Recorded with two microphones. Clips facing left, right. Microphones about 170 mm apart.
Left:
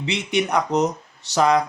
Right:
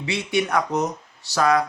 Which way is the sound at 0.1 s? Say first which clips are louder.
Even; 20° left (ahead or behind).